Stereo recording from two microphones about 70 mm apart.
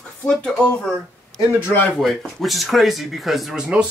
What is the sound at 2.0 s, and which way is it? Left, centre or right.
Speech, centre.